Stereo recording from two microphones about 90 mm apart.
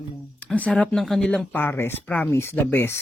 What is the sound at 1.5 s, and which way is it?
Speech, 25° left (ahead or behind).